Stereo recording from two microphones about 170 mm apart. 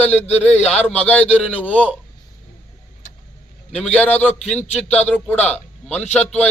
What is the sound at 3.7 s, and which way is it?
A man's voice, 10° left (ahead or behind).